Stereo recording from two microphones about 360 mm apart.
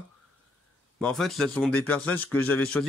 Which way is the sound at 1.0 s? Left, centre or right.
Centre.